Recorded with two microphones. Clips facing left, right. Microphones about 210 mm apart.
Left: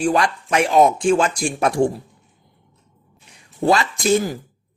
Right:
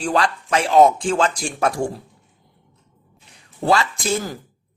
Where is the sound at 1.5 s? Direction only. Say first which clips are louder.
Left 5 dB; 20° left (ahead or behind).